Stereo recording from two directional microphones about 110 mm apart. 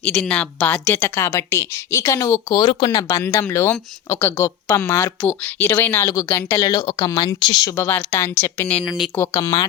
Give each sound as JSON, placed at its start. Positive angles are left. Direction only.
{"t": 0.0, "sound": "speech", "side_deg": 10}
{"t": 2.6, "sound": "speech", "side_deg": 40}
{"t": 3.1, "sound": "speech", "side_deg": 20}
{"t": 6.7, "sound": "speech", "side_deg": 40}
{"t": 7.3, "sound": "speech", "side_deg": 45}
{"t": 7.8, "sound": "speech", "side_deg": 20}